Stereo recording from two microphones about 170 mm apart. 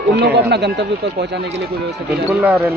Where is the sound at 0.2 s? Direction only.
80° right.